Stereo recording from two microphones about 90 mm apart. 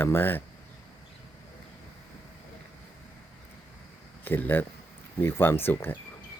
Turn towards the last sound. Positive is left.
turn(degrees=25)  # may be behind; listen again after turning